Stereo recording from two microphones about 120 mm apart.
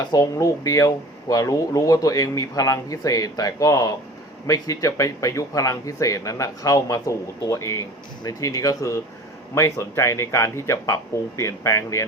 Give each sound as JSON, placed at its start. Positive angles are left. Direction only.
{"t": 0.0, "sound": "speech", "side_deg": 35}